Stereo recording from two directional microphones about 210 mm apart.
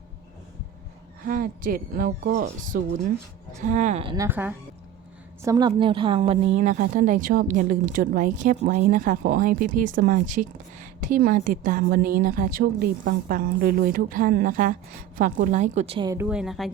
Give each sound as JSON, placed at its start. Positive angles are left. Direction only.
{"t": 1.2, "sound": "a woman's voice", "side_deg": -40}
{"t": 4.3, "sound": "speech", "side_deg": -10}
{"t": 5.5, "sound": "a woman's voice", "side_deg": -20}
{"t": 16.1, "sound": "a woman's voice", "side_deg": -5}